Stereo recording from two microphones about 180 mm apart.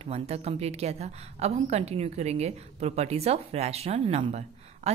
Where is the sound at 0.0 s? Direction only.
35° right (ahead or behind).